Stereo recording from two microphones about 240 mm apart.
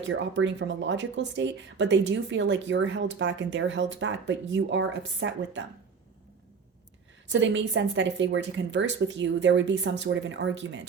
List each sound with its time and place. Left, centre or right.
0.1 s speech: right
7.3 s speech: right